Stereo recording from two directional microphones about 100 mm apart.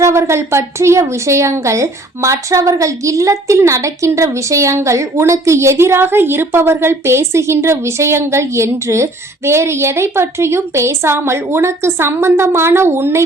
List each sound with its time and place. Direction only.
0.0 s a woman's voice: 30° right (ahead or behind)